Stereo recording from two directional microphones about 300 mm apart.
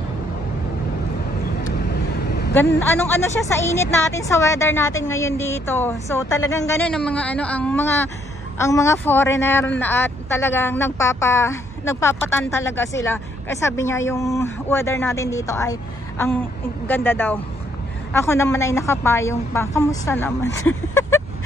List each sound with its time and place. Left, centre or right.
2.2 s vehicle: left
2.8 s a woman's voice: centre